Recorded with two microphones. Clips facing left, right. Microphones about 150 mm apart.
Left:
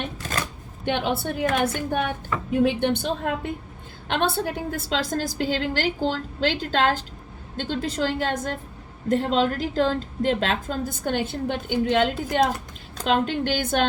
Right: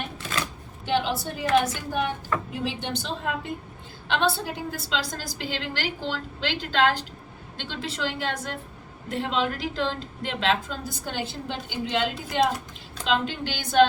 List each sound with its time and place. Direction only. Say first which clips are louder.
0.9 s a woman's voice: left 1 dB; 60° left (ahead or behind)
4.7 s a woman's voice: left 5 dB; 50° left (ahead or behind)